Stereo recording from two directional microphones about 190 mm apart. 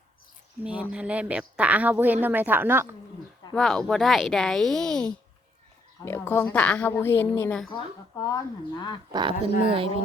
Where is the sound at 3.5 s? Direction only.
5° left (ahead or behind); by 8.3 s 20° left (ahead or behind).